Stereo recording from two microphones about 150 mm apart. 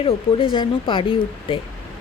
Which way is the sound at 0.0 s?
40° left (ahead or behind).